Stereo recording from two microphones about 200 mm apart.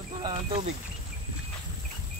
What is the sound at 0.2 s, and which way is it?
Speech, 25° right (ahead or behind).